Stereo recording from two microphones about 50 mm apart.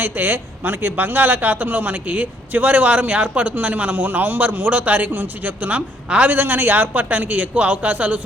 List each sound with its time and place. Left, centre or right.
0.0 s a man's voice: right
6.2 s a man's voice: right